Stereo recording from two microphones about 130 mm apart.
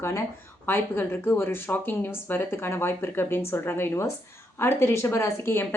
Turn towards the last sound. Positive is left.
turn(degrees=20)  # may be behind; listen again after turning